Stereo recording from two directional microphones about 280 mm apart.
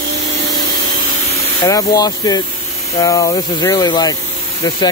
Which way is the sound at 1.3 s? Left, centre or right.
Centre.